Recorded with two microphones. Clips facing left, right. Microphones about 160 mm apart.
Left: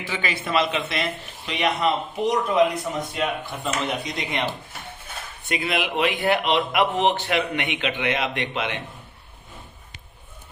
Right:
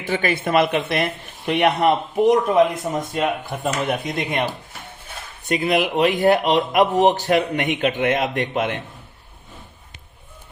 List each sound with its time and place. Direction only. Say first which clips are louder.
0.0 s speech: right 7 dB; 50° right (ahead or behind)
5.5 s speech: right 6 dB; 40° right (ahead or behind)